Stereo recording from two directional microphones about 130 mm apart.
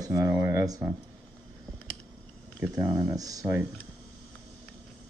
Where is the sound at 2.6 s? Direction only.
15° right (ahead or behind).